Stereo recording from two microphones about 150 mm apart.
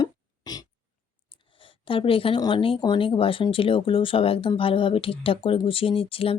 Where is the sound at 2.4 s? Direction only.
35° left (ahead or behind).